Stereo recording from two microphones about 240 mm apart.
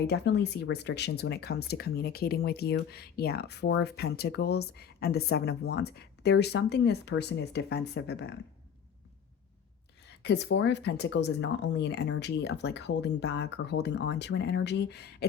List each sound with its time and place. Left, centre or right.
0.1 s speech: left
10.2 s speech: left